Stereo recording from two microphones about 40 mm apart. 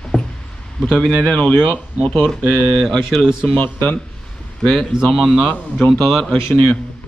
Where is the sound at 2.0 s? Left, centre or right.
Centre.